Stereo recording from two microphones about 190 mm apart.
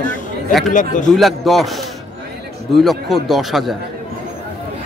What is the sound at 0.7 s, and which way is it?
Speech, 40° left (ahead or behind).